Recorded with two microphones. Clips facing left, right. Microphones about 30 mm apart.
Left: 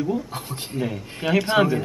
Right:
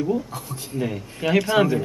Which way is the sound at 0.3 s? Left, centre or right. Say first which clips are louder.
Left 2 dB; left.